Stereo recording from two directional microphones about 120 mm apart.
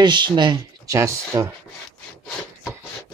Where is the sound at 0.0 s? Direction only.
40° right (ahead or behind).